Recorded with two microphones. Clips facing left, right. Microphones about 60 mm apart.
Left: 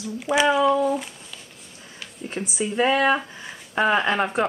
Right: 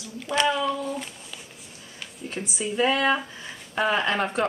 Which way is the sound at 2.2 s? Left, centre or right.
Left.